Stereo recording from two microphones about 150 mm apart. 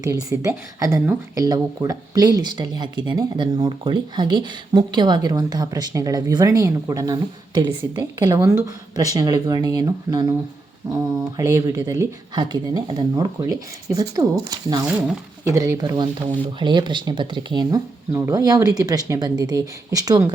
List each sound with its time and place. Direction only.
0.0 s speech: 20° right (ahead or behind)
18.1 s speech: 20° right (ahead or behind)